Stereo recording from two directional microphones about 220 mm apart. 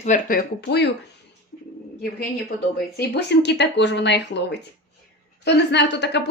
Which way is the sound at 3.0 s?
50° left (ahead or behind).